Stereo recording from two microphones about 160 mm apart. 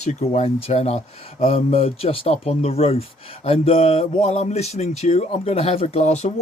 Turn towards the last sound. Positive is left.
turn(degrees=40)  # may be behind; listen again after turning